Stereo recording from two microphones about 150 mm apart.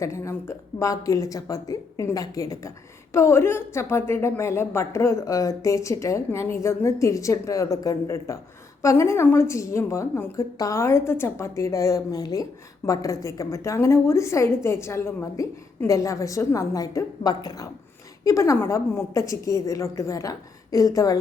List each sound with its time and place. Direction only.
0.0 s speech: 20° left (ahead or behind)